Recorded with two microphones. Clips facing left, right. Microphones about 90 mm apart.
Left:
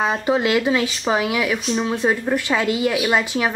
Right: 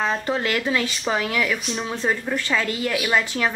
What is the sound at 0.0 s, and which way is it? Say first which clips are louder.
Speech: left 4 dB; 15° left (ahead or behind).